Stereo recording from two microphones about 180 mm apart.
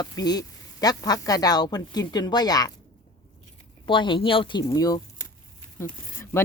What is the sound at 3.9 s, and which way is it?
Speech, 25° left (ahead or behind).